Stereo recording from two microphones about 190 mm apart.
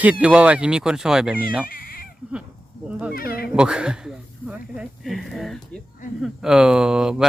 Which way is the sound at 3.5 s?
5° right (ahead or behind).